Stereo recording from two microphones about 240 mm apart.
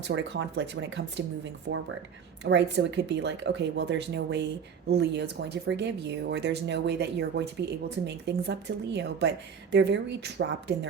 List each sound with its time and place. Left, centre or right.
0.1 s speech: right
2.4 s speech: right